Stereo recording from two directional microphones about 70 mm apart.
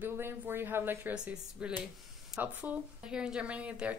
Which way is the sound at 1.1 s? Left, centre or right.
Centre.